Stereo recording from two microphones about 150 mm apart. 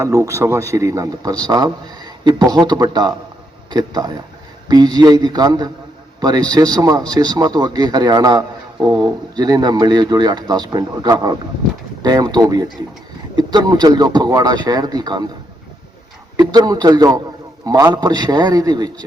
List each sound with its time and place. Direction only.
0.0 s a man's voice: 20° right (ahead or behind)
16.4 s a man's voice: 25° right (ahead or behind)